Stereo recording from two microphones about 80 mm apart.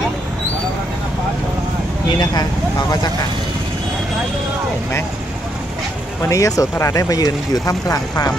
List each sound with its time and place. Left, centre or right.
2.0 s speech: left
6.2 s speech: left